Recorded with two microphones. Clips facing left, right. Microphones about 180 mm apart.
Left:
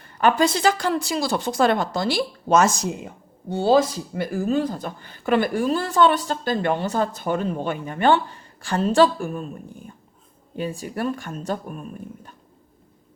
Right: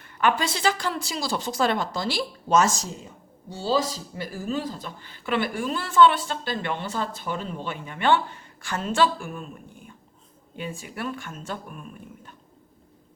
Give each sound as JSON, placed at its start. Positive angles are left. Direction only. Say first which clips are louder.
{"t": 0.0, "sound": "speech", "louder": "left 5 dB", "side_deg": 40}